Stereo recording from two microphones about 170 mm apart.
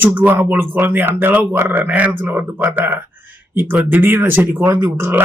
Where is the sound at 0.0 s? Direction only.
10° right (ahead or behind).